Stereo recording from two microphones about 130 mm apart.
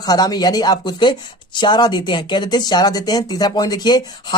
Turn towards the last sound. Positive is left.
turn(degrees=30)  # may be behind; listen again after turning